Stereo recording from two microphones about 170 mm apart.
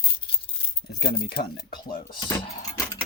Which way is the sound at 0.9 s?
60° left (ahead or behind).